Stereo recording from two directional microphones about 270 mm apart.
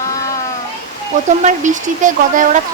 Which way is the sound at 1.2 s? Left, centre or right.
Right.